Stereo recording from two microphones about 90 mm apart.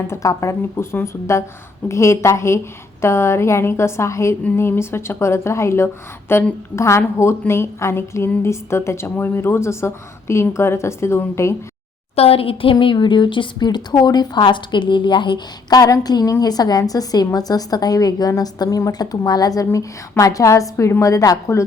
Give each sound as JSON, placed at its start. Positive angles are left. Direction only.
{"t": 0.1, "sound": "a woman's voice", "side_deg": 35}
{"t": 12.1, "sound": "a woman's voice", "side_deg": 90}
{"t": 12.7, "sound": "a woman's voice", "side_deg": 60}
{"t": 15.7, "sound": "a woman's voice", "side_deg": 45}